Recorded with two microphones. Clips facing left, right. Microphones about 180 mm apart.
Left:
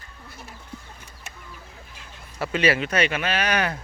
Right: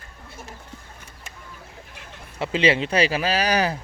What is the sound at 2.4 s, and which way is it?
Speech, 25° right (ahead or behind).